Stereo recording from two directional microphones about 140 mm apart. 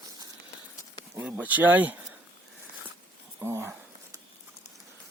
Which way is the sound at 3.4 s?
20° right (ahead or behind).